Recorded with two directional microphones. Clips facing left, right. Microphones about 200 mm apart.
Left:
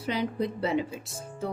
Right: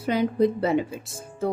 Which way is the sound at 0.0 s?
50° right (ahead or behind).